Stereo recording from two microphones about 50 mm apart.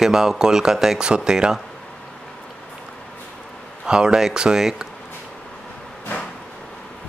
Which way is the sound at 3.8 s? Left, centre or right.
Centre.